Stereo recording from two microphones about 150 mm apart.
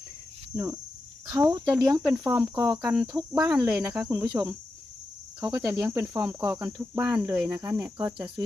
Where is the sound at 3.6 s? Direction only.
5° right (ahead or behind).